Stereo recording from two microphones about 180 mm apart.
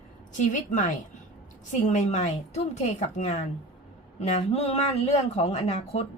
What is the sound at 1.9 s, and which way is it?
Speech, 40° left (ahead or behind).